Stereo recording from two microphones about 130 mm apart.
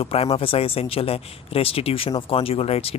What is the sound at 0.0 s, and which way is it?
Speech, 45° left (ahead or behind).